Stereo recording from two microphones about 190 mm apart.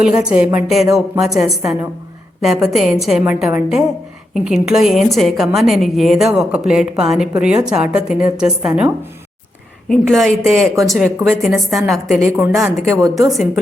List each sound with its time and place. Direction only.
0.0 s a woman's voice: 5° right (ahead or behind)
9.9 s a woman's voice: centre (ahead or behind)
13.0 s a woman's voice: 20° right (ahead or behind)